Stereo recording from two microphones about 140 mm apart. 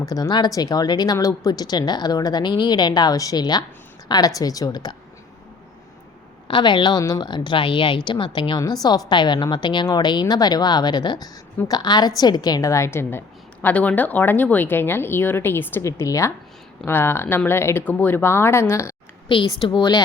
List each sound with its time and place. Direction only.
0.0 s speech: 25° left (ahead or behind)
6.5 s a woman's voice: 35° left (ahead or behind)
19.5 s a woman's voice: 40° left (ahead or behind)